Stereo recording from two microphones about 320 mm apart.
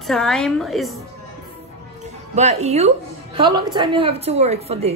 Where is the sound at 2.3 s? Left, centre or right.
Centre.